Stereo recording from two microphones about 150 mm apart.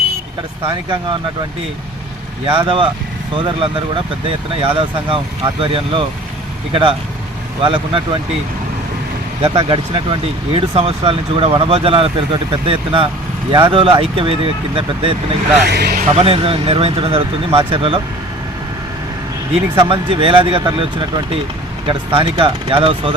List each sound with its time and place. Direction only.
0.6 s speech: 30° right (ahead or behind)
2.5 s speech: 35° right (ahead or behind)
7.6 s speech: 35° right (ahead or behind)
9.4 s speech: 35° right (ahead or behind)
15.6 s speech: 90° right; by 16.1 s 60° right (ahead or behind)
16.1 s speech: 40° right (ahead or behind)
19.8 s speech: 35° right (ahead or behind)